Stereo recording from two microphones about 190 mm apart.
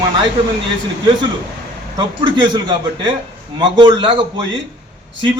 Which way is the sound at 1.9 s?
25° right (ahead or behind).